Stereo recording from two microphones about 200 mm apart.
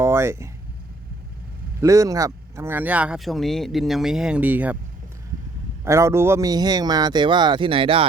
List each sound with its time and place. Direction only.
0.0 s a sound: 10° right (ahead or behind)
1.8 s speech: 15° right (ahead or behind)
5.8 s speech: 15° right (ahead or behind)